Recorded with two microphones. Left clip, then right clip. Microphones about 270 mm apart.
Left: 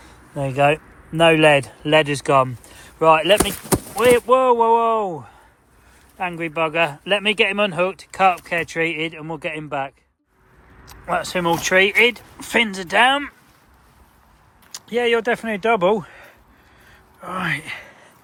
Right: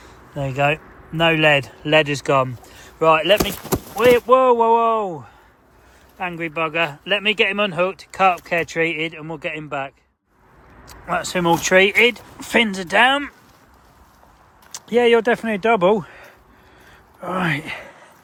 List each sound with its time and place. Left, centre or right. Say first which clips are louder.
0.0 s speech: left 1 dB; centre
14.7 s speech: right 4 dB; centre